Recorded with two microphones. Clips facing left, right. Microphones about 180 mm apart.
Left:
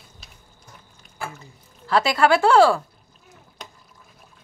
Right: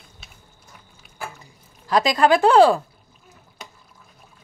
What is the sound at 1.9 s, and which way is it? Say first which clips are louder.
Speech: right 1 dB; 15° right (ahead or behind).